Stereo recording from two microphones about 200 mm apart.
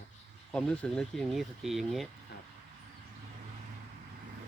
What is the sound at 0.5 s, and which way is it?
Speech, 5° left (ahead or behind).